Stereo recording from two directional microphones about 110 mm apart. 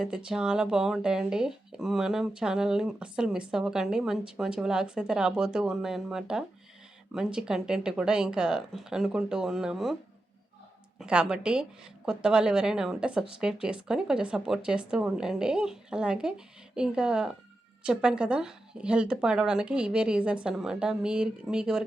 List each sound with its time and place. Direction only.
0.0 s speech: 5° right (ahead or behind)
11.0 s speech: 10° right (ahead or behind)